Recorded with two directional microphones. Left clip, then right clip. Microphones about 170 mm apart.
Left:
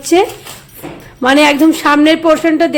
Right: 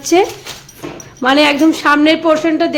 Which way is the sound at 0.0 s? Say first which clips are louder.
Left 1 dB; 10° left (ahead or behind).